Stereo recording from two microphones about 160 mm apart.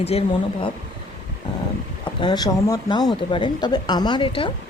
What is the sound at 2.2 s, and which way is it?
Speech, 25° left (ahead or behind).